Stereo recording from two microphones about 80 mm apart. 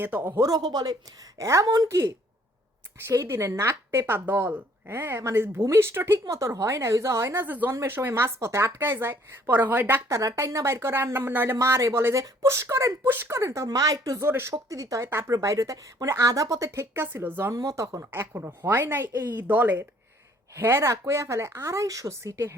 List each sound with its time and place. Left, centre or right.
0.0 s a woman's voice: right
0.3 s a woman's voice: right
6.2 s a woman's voice: right
7.4 s a woman's voice: right
10.1 s a woman's voice: right
11.5 s a woman's voice: right
13.1 s a woman's voice: right
13.4 s a woman's voice: right
14.2 s a woman's voice: right
14.5 s a woman's voice: right
17.5 s a woman's voice: right
18.0 s a woman's voice: right